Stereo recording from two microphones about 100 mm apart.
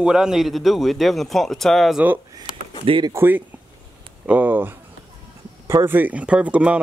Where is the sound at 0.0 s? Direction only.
5° right (ahead or behind).